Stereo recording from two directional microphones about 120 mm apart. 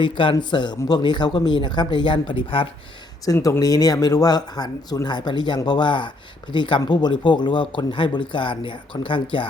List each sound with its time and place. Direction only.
0.0 s speech: 45° left (ahead or behind)
3.2 s speech: 25° left (ahead or behind); by 9.5 s 45° left (ahead or behind)